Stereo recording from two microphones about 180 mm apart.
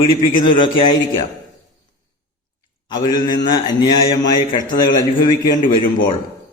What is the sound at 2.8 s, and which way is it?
A man's voice, 25° left (ahead or behind).